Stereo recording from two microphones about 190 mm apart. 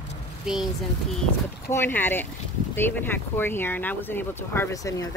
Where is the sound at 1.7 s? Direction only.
10° left (ahead or behind).